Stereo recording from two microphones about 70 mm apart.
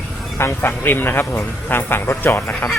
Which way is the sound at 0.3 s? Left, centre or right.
Left.